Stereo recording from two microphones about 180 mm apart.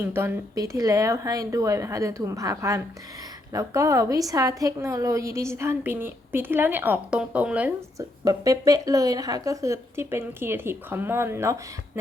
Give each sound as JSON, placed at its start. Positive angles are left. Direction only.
{"t": 0.0, "sound": "a woman's voice", "side_deg": -10}
{"t": 8.2, "sound": "a woman's voice", "side_deg": -20}